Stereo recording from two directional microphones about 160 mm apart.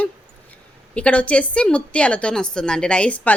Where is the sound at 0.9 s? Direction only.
10° left (ahead or behind).